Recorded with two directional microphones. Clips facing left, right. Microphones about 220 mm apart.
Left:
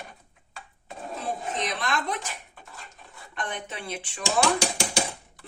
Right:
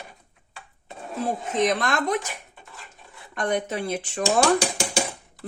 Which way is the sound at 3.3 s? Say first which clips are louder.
Right 10 dB; 45° right (ahead or behind).